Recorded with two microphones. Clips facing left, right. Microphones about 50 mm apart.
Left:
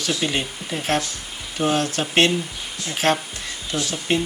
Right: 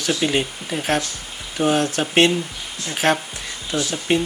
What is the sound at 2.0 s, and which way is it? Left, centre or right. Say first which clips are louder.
Speech: right 1 dB; centre.